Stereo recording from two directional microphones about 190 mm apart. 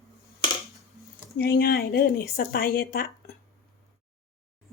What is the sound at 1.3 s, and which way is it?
Speech, 55° left (ahead or behind).